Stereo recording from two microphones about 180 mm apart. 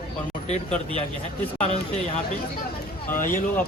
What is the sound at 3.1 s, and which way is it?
Speech, 50° left (ahead or behind).